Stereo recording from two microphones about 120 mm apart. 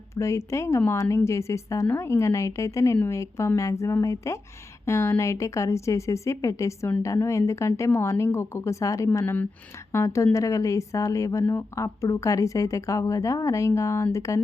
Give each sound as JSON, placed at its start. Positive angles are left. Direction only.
{"t": 0.2, "sound": "a woman's voice", "side_deg": 25}